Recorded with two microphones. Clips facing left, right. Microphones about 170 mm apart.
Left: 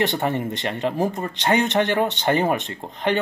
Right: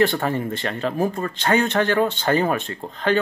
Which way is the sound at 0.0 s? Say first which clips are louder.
Right 2 dB; 20° left (ahead or behind).